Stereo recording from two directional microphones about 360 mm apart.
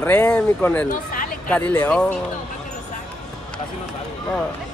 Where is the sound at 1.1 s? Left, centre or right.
Left.